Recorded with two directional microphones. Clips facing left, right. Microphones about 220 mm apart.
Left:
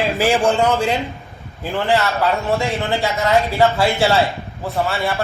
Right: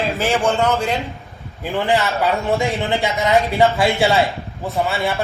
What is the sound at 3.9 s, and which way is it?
Speech, centre (ahead or behind).